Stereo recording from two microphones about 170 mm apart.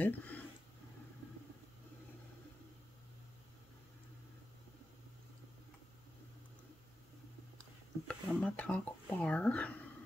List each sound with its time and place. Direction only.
0.0 s speech: 10° left (ahead or behind)
8.1 s speech: 5° left (ahead or behind)